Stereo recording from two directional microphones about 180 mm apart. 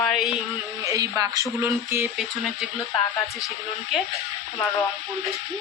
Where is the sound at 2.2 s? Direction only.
Centre (ahead or behind).